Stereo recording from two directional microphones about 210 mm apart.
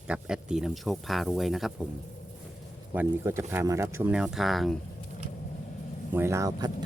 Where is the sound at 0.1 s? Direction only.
5° right (ahead or behind).